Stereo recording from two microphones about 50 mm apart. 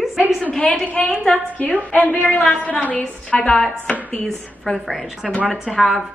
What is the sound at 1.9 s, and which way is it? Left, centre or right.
A woman's voice, left.